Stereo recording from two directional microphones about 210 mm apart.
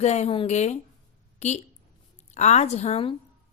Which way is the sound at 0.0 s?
30° left (ahead or behind).